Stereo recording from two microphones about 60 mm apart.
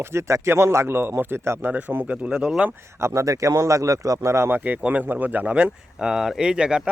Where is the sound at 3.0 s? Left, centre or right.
Right.